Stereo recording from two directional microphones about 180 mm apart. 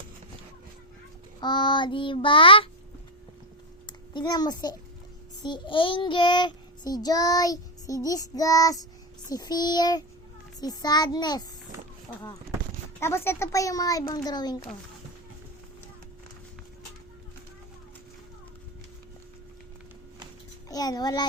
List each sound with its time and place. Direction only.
1.4 s child singing: 25° left (ahead or behind)
3.8 s a child's voice: 25° left (ahead or behind)
5.4 s child singing: 25° left (ahead or behind)
13.0 s speech: 15° left (ahead or behind)
14.3 s child singing: 20° left (ahead or behind)
20.7 s a child's voice: 20° left (ahead or behind)